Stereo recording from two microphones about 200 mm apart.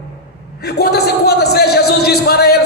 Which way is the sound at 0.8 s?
50° left (ahead or behind).